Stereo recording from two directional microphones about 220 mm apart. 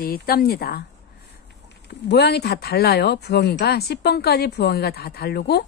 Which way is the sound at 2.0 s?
45° left (ahead or behind).